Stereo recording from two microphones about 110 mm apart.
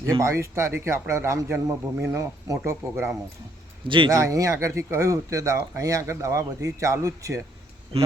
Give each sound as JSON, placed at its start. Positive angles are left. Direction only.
{"t": 0.0, "sound": "speech", "side_deg": -30}
{"t": 3.8, "sound": "speech", "side_deg": -50}
{"t": 4.1, "sound": "speech", "side_deg": -30}